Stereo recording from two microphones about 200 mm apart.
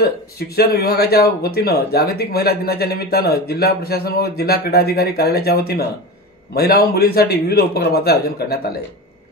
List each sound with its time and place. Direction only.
0.6 s speech: 50° left (ahead or behind)